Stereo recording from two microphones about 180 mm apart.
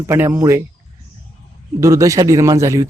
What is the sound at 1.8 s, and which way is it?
Speech, 15° right (ahead or behind).